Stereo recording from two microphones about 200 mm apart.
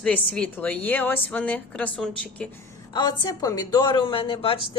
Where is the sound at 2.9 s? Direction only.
20° left (ahead or behind).